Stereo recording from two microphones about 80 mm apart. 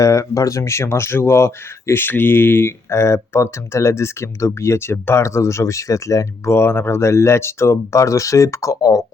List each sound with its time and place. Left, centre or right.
0.0 s speech: left